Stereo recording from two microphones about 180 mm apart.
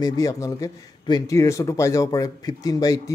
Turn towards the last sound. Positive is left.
turn(degrees=20)  # may be behind; listen again after turning